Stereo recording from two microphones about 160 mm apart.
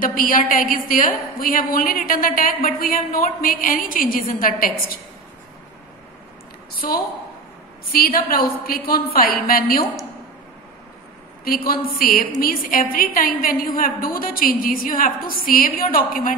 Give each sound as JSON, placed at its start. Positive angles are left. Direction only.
{"t": 0.0, "sound": "a woman's voice", "side_deg": 60}
{"t": 6.8, "sound": "a woman's voice", "side_deg": 65}
{"t": 11.4, "sound": "a woman's voice", "side_deg": 65}